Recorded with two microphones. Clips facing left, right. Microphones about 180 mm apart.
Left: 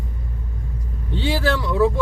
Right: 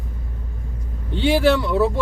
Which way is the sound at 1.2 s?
20° right (ahead or behind).